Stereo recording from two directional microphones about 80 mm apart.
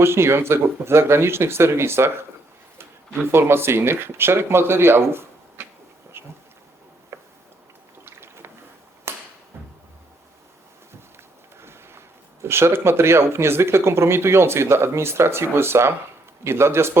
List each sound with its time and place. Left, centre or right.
0.0 s speech: right
6.2 s boat: right
7.1 s a sound: right
8.0 s boat: right
9.1 s a sound: right
11.6 s speech: right